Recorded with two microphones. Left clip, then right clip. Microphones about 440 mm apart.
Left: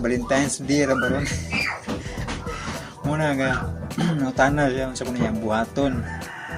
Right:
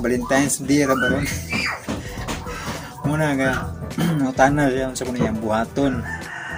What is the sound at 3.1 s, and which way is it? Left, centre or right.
Speech, left.